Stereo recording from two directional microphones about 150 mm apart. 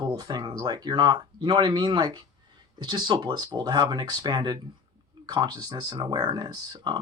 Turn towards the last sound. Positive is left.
turn(degrees=-25)  # may be behind; listen again after turning